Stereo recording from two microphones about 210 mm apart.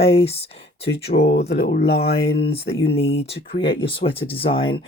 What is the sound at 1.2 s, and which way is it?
Speech, 50° left (ahead or behind).